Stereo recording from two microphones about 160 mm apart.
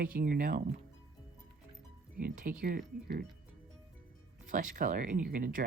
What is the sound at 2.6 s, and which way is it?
Speech, 70° right (ahead or behind).